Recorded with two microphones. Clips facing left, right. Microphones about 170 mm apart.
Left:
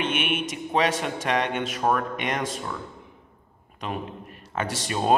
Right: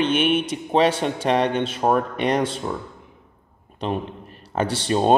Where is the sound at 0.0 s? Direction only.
30° right (ahead or behind).